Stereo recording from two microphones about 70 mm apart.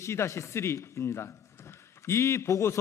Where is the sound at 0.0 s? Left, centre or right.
Left.